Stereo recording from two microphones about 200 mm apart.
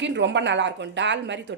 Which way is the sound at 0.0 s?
60° right (ahead or behind).